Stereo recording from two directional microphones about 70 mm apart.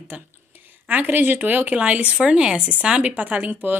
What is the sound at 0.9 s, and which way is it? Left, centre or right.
Speech, right.